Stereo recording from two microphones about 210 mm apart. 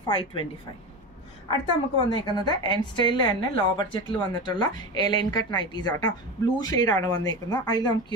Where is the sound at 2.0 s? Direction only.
20° left (ahead or behind).